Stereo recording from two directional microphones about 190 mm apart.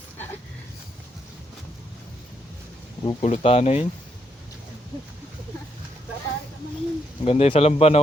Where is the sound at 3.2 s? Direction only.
35° left (ahead or behind).